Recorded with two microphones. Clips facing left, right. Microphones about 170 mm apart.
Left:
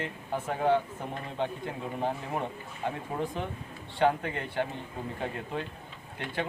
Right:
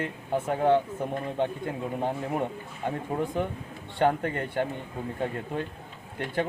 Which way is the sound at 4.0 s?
45° right (ahead or behind).